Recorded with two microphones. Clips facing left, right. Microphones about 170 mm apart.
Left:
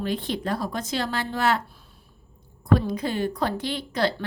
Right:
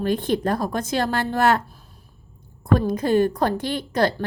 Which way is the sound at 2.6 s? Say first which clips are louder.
Right 3 dB; 45° right (ahead or behind).